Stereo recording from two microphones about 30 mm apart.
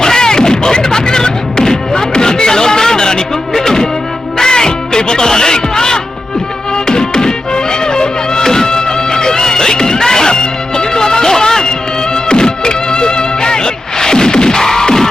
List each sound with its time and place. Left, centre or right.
0.0 s music: left